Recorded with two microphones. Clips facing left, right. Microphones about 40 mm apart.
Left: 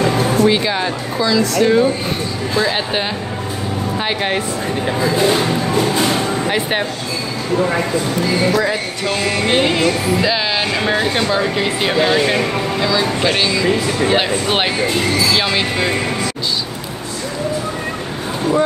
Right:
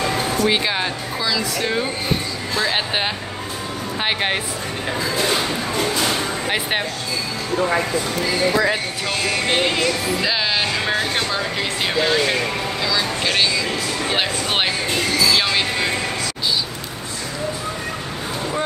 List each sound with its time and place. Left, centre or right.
0.5 s speech: centre
5.0 s speech: centre
9.0 s speech: centre